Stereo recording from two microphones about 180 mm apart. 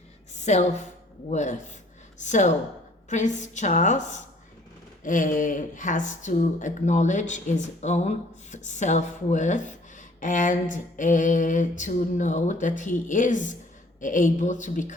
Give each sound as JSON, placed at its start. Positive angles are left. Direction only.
{"t": 0.3, "sound": "a woman's voice", "side_deg": 40}